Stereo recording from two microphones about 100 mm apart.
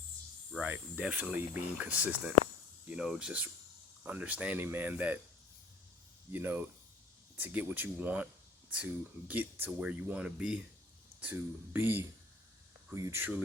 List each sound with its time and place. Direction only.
0.6 s speech: 15° right (ahead or behind)
6.3 s speech: 20° right (ahead or behind)
11.2 s speech: 20° right (ahead or behind)